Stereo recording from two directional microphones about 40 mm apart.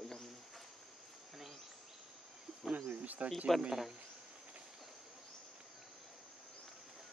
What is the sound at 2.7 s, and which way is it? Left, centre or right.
Cricket, right.